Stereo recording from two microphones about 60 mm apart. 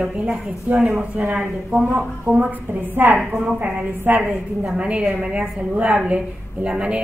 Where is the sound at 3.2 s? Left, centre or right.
Centre.